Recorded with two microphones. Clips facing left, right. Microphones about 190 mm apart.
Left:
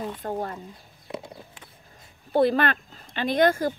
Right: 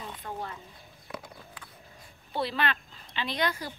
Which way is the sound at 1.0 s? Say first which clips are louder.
Left 6 dB; 25° left (ahead or behind).